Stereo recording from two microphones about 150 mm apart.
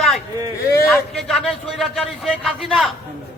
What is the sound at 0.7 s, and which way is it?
Speech, 20° left (ahead or behind).